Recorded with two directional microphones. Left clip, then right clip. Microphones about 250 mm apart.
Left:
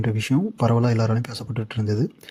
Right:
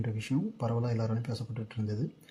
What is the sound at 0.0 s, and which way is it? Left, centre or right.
Speech, left.